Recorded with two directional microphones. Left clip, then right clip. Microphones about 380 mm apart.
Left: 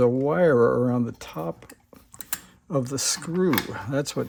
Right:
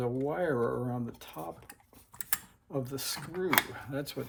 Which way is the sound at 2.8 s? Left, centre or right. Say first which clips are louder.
Left 10 dB; centre.